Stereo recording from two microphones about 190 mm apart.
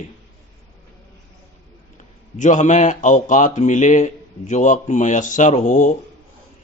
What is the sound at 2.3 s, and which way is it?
A man's voice, 40° left (ahead or behind).